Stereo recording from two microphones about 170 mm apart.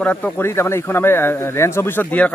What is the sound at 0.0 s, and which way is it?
Speech, 10° left (ahead or behind).